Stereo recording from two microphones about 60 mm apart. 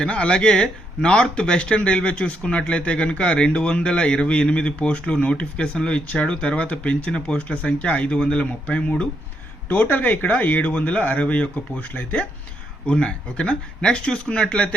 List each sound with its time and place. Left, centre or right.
0.0 s speech: centre